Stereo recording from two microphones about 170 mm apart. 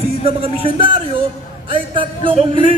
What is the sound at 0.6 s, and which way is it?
A woman's voice, 35° right (ahead or behind).